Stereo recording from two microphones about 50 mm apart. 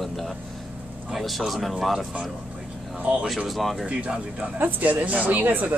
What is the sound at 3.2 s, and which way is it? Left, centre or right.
Speech, centre.